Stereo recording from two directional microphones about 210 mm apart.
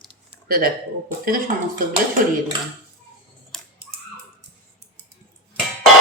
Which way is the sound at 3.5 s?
5° left (ahead or behind).